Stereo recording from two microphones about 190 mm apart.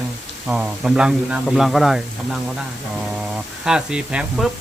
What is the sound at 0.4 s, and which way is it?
Speech, 5° right (ahead or behind).